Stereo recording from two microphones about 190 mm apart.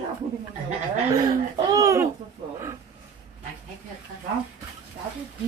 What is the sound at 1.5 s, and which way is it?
Speech, 15° right (ahead or behind).